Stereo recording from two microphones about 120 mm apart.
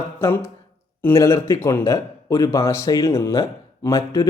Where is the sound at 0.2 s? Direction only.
20° left (ahead or behind).